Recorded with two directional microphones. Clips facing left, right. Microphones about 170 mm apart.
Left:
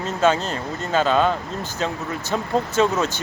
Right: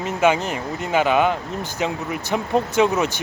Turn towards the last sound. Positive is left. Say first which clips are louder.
# right 1 dB
turn(degrees=-15)  # may be behind; listen again after turning